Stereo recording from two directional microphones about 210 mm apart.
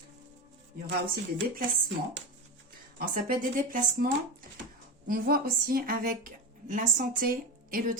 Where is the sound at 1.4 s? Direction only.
60° right (ahead or behind).